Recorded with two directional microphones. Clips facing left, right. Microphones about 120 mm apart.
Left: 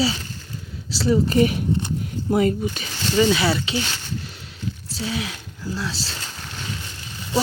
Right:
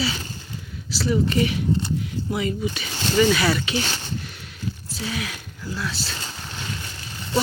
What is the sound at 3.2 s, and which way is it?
Speech, 20° left (ahead or behind).